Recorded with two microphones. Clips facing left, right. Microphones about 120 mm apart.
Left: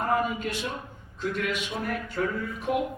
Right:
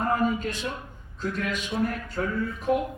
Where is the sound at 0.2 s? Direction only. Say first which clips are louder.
Right 2 dB; 40° right (ahead or behind).